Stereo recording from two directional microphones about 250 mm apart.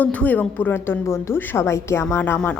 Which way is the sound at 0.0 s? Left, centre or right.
Centre.